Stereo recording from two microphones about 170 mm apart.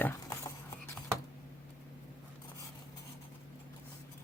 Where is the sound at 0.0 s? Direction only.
15° left (ahead or behind).